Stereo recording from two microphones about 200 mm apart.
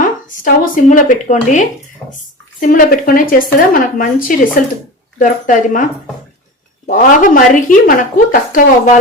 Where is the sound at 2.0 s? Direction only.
15° left (ahead or behind).